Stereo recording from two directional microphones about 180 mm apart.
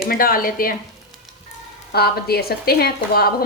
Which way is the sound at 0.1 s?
55° left (ahead or behind).